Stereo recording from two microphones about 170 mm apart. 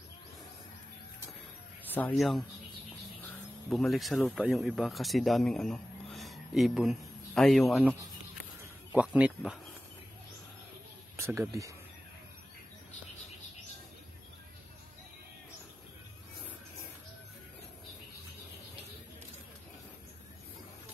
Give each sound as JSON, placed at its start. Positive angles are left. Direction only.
{"t": 1.9, "sound": "speech", "side_deg": 10}
{"t": 2.1, "sound": "speech", "side_deg": 0}
{"t": 3.7, "sound": "speech", "side_deg": 0}
{"t": 8.9, "sound": "speech", "side_deg": -10}
{"t": 11.1, "sound": "speech", "side_deg": -15}